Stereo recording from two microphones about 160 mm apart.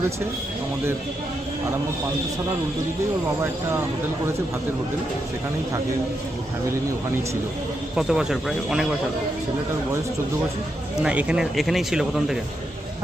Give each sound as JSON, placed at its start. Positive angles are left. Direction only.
{"t": 7.9, "sound": "speech", "side_deg": -5}
{"t": 11.0, "sound": "speech", "side_deg": -10}